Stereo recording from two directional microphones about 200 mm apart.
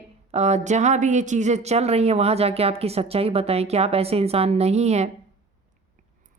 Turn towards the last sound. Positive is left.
turn(degrees=-35)  # may be behind; listen again after turning